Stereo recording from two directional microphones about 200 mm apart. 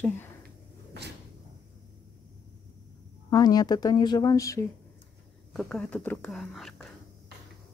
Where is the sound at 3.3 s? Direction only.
20° left (ahead or behind).